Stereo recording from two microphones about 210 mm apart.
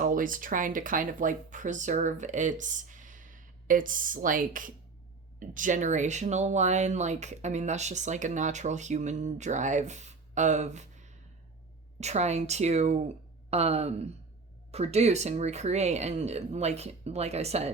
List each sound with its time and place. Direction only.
0.0 s speech: 40° right (ahead or behind)